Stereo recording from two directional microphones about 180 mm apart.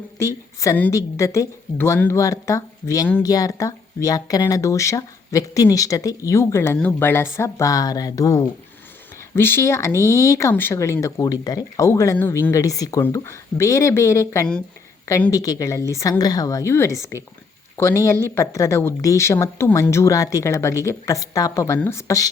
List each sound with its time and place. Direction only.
0.2 s a woman's voice: 15° left (ahead or behind)